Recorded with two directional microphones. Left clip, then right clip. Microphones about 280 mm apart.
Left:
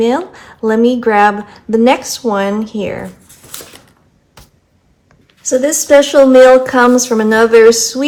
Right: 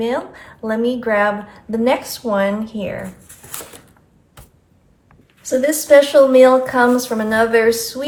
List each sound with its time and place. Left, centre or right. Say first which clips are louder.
0.0 s a woman's voice: left 7 dB; left
5.5 s a woman's voice: left 3 dB; left